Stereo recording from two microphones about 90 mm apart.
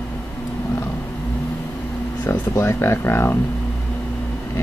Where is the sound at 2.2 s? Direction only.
25° left (ahead or behind).